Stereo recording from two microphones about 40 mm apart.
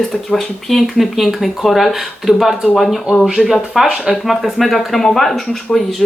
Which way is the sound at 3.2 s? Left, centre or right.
Right.